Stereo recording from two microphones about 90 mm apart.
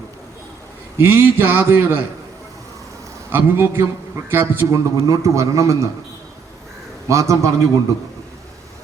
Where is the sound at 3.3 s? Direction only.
25° right (ahead or behind).